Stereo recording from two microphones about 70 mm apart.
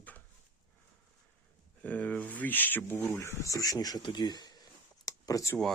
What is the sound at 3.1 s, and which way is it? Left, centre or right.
Speech, left.